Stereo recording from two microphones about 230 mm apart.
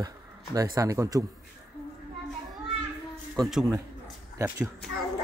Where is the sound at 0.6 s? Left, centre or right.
Centre.